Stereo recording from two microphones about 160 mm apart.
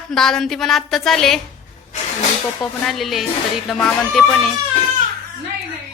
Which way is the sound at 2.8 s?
Centre (ahead or behind).